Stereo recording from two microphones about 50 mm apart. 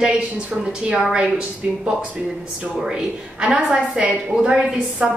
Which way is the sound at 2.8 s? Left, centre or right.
Centre.